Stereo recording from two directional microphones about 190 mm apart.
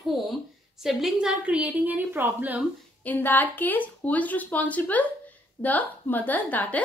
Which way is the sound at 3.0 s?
10° left (ahead or behind).